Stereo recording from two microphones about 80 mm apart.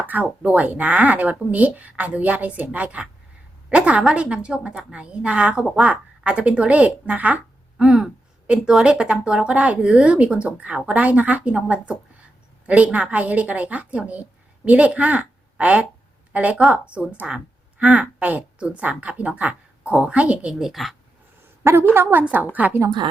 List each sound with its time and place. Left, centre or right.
0.1 s a woman's voice: centre
21.6 s a woman's voice: right